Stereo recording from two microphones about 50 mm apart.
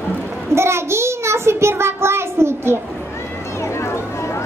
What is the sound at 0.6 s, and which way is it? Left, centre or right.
Child singing, right.